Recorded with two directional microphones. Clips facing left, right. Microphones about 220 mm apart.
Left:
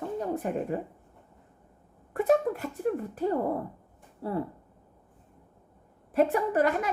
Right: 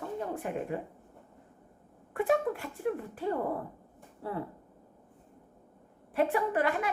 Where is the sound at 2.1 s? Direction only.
40° left (ahead or behind).